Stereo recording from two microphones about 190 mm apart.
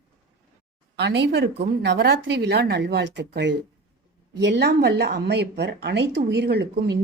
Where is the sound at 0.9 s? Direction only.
65° right (ahead or behind).